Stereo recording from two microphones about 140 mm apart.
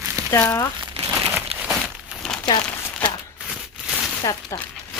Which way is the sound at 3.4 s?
10° right (ahead or behind).